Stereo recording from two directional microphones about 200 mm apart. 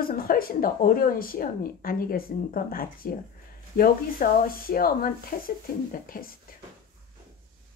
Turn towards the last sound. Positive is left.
turn(degrees=45)  # may be behind; listen again after turning